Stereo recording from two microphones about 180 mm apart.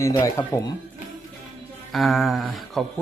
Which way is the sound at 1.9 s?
Centre (ahead or behind).